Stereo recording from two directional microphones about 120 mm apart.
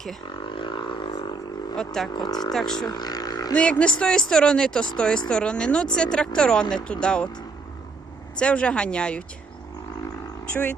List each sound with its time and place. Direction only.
0.4 s vehicle: 45° left (ahead or behind)
1.7 s speech: 5° left (ahead or behind)
2.1 s speech: 35° left (ahead or behind)
2.5 s speech: 5° left (ahead or behind)
2.8 s vehicle: 35° left (ahead or behind)
3.5 s a woman's voice: 10° left (ahead or behind)
8.4 s a woman's voice: 10° left (ahead or behind)